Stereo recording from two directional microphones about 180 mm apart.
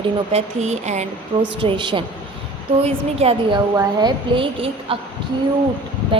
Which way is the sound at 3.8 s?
25° right (ahead or behind).